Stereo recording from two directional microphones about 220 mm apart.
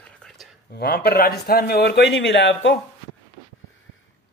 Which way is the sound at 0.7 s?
45° left (ahead or behind).